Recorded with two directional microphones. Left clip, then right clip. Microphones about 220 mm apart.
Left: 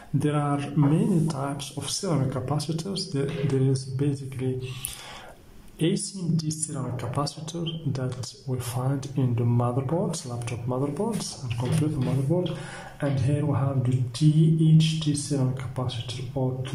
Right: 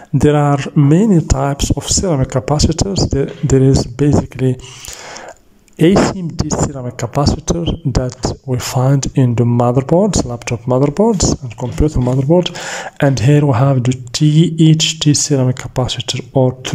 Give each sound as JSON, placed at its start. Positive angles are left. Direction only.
{"t": 0.2, "sound": "speech", "side_deg": -30}
{"t": 5.8, "sound": "speech", "side_deg": -35}
{"t": 12.3, "sound": "speech", "side_deg": -40}